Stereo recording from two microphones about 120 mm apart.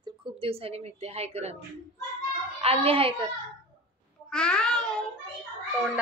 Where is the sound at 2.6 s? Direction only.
50° right (ahead or behind).